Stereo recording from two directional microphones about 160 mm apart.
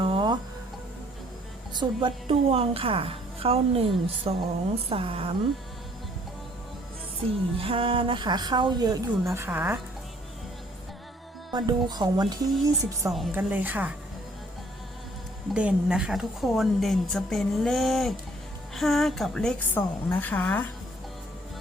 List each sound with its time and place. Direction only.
0.0 s music: 30° right (ahead or behind)
1.7 s a woman's voice: 30° right (ahead or behind)
7.6 s a woman's voice: 35° right (ahead or behind); by 9.8 s 15° right (ahead or behind)
11.5 s a woman's voice: 25° right (ahead or behind)
13.1 s a woman's voice: centre (ahead or behind)
13.3 s speech: 10° right (ahead or behind)
15.5 s a woman's voice: 5° right (ahead or behind); by 20.7 s 10° left (ahead or behind)